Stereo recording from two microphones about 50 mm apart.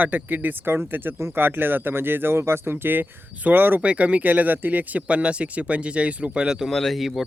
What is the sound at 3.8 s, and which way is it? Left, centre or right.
Speech, right.